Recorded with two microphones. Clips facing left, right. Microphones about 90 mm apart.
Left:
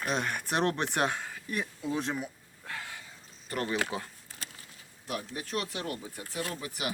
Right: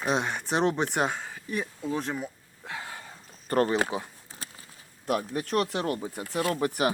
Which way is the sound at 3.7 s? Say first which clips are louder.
Right 5 dB; 25° right (ahead or behind).